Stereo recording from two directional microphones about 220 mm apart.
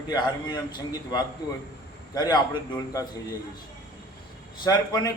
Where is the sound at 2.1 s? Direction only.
15° left (ahead or behind).